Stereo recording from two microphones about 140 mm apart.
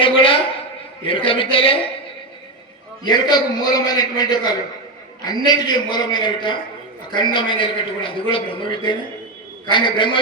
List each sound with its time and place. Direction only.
0.0 s a sound: 40° left (ahead or behind)
1.0 s a man's voice: 40° left (ahead or behind)
3.0 s a man's voice: 30° left (ahead or behind)